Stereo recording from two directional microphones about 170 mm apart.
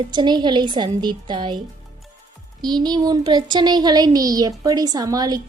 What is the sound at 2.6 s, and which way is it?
Speech, 25° right (ahead or behind).